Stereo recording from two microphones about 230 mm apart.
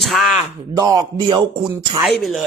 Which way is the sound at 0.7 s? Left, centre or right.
Centre.